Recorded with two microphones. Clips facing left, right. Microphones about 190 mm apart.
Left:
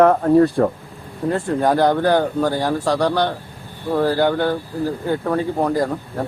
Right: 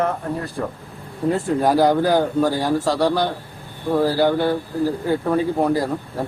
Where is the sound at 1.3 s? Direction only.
5° right (ahead or behind).